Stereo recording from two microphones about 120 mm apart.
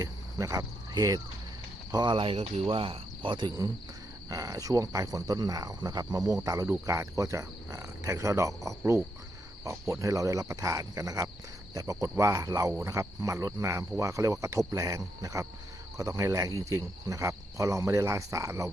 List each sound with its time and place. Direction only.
0.0 s cricket: 30° right (ahead or behind)
1.9 s speech: 40° right (ahead or behind)
4.3 s cricket: 30° right (ahead or behind)